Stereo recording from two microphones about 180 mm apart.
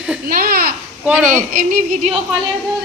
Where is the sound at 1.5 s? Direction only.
45° right (ahead or behind).